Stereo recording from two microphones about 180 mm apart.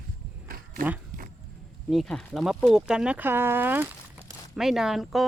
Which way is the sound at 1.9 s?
Centre (ahead or behind).